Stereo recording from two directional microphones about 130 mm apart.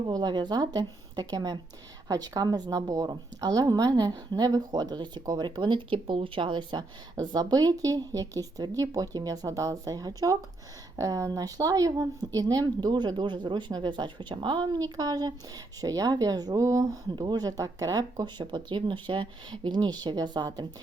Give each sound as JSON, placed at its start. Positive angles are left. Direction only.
{"t": 0.1, "sound": "a woman's voice", "side_deg": -35}